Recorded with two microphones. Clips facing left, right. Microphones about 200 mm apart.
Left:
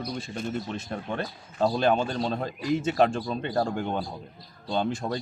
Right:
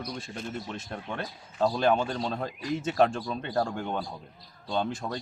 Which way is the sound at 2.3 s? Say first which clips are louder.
Left 4 dB; centre (ahead or behind).